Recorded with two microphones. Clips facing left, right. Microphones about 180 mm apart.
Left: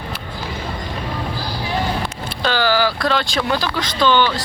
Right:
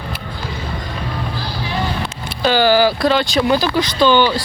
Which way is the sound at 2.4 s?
15° right (ahead or behind).